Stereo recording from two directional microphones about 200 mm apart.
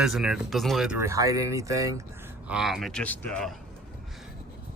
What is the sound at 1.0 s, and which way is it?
Speech, 15° right (ahead or behind).